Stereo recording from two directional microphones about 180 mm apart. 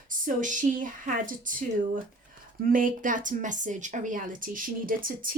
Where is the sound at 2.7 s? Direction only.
50° right (ahead or behind).